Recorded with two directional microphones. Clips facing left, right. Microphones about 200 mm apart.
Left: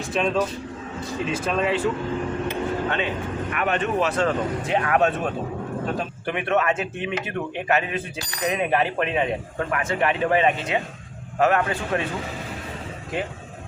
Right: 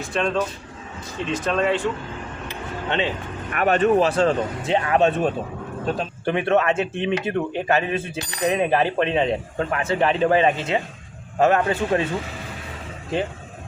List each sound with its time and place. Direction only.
0.1 s speech: 5° left (ahead or behind)
3.5 s speech: 40° right (ahead or behind)